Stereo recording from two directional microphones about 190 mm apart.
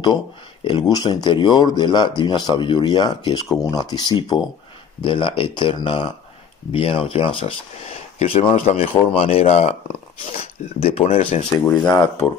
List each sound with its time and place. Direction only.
0.7 s speech: 25° left (ahead or behind)
11.7 s speech: 5° left (ahead or behind)